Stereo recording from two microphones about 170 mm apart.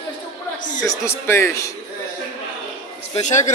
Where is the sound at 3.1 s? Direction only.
45° left (ahead or behind).